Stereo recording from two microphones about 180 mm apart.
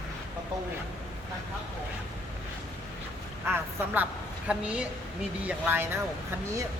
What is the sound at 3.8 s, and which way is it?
A woman's voice, 10° right (ahead or behind).